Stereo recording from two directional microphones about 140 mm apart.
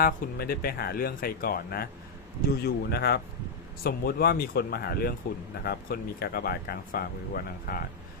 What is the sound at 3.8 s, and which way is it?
Speech, 90° left.